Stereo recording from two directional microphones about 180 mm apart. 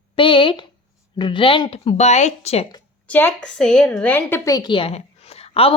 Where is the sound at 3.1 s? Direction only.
10° left (ahead or behind).